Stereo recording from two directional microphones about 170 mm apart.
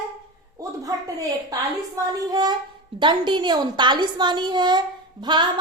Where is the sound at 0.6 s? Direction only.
20° right (ahead or behind).